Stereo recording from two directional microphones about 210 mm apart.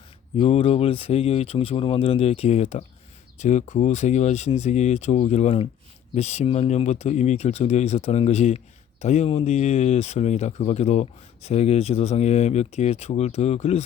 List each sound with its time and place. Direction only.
0.3 s speech: 30° left (ahead or behind)